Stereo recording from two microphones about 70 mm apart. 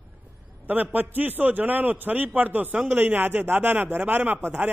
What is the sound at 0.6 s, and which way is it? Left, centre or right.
A man's voice, right.